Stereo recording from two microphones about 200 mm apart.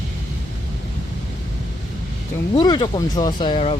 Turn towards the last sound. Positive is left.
turn(degrees=25)  # may be behind; listen again after turning